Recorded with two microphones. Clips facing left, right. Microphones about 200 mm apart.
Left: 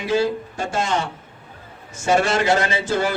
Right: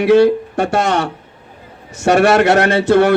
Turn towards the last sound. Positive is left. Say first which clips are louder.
# right 10 dB
turn(degrees=-70)  # may be behind; listen again after turning